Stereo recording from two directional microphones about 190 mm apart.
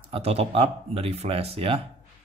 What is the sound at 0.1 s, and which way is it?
Speech, 35° right (ahead or behind).